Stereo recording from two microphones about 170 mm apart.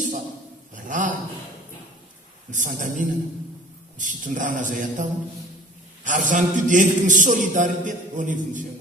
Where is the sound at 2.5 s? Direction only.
50° right (ahead or behind).